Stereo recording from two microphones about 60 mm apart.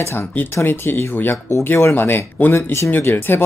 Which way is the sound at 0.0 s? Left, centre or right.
Left.